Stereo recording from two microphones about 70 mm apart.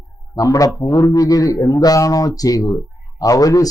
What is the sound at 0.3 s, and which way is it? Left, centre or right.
A man's voice, left.